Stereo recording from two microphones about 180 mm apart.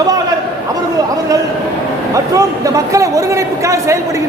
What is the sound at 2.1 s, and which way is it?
A man's voice, 20° right (ahead or behind).